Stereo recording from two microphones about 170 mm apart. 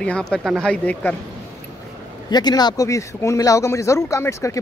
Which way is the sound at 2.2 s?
25° left (ahead or behind).